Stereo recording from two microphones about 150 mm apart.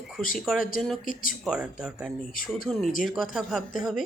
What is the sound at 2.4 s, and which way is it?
Speech, 70° left (ahead or behind).